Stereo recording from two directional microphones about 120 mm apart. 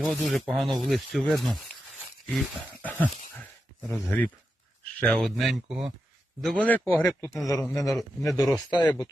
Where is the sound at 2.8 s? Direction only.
15° left (ahead or behind); by 5.9 s 5° right (ahead or behind).